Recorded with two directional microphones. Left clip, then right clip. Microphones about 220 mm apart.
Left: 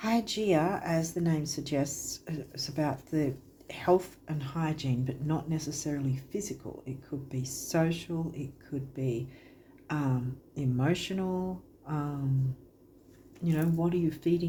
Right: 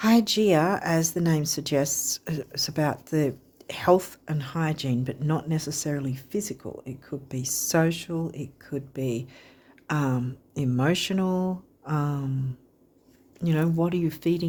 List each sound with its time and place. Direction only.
0.0 s speech: 50° right (ahead or behind)
13.4 s speech: 50° right (ahead or behind)